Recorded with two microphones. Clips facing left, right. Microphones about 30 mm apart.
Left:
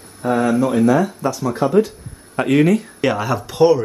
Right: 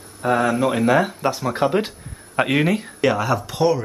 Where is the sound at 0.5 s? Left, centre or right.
Right.